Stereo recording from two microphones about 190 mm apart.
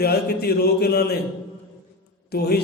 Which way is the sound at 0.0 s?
55° left (ahead or behind).